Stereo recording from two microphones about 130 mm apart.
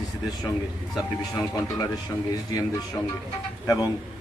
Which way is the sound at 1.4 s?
25° left (ahead or behind).